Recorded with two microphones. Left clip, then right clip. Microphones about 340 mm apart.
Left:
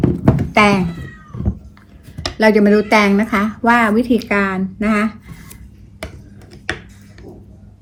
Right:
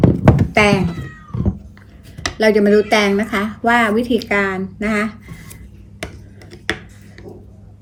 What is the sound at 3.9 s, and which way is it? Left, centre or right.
A woman's voice, centre.